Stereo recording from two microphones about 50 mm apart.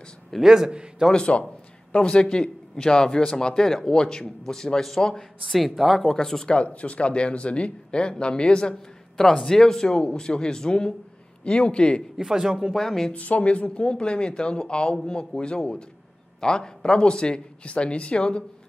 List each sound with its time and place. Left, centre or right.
0.5 s a man's voice: centre
1.1 s a man's voice: left
6.5 s a man's voice: left
12.2 s a man's voice: centre
12.7 s a man's voice: centre
13.1 s speech: left